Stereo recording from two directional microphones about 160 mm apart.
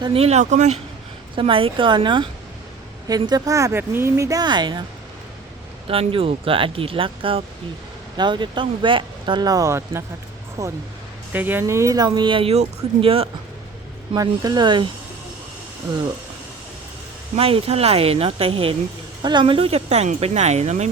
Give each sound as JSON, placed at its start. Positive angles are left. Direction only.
{"t": 0.0, "sound": "speech", "side_deg": -35}
{"t": 1.4, "sound": "speech", "side_deg": -35}
{"t": 5.9, "sound": "speech", "side_deg": -35}
{"t": 14.2, "sound": "speech", "side_deg": -25}
{"t": 17.3, "sound": "speech", "side_deg": -40}